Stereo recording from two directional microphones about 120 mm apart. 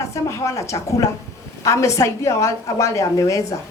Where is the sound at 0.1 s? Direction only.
25° left (ahead or behind).